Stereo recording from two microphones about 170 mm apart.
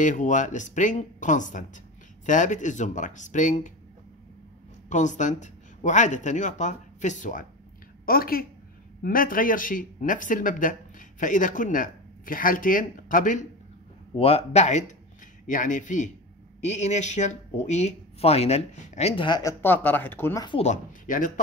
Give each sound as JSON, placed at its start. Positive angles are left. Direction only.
{"t": 0.0, "sound": "speech", "side_deg": 45}
{"t": 4.8, "sound": "speech", "side_deg": 45}
{"t": 8.0, "sound": "a woman's voice", "side_deg": 60}
{"t": 14.1, "sound": "speech", "side_deg": 35}
{"t": 19.6, "sound": "speech", "side_deg": 10}
{"t": 20.6, "sound": "speech", "side_deg": 50}